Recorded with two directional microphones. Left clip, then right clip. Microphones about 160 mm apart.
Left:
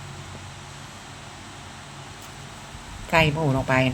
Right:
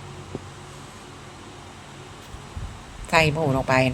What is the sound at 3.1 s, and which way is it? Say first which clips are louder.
Speech: right 1 dB; 45° right (ahead or behind).